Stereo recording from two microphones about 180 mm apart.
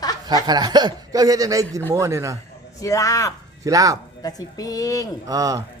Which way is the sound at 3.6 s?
20° right (ahead or behind).